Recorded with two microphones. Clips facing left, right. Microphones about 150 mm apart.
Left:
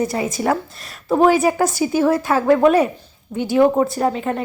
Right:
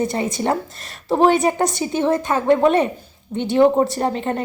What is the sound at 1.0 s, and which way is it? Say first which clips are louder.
Speech: left 1 dB; 20° right (ahead or behind).